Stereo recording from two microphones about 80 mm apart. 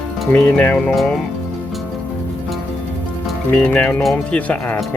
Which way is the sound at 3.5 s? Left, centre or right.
Centre.